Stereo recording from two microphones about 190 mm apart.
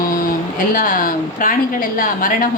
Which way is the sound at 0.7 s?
45° left (ahead or behind).